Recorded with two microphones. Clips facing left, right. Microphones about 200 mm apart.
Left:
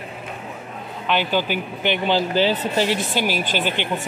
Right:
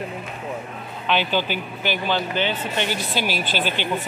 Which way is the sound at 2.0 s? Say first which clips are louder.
Left 6 dB; 30° left (ahead or behind).